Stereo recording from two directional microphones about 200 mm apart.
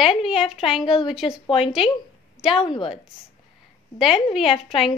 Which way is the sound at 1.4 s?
25° left (ahead or behind).